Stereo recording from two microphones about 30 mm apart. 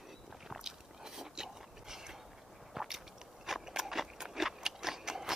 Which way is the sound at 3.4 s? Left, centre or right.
Centre.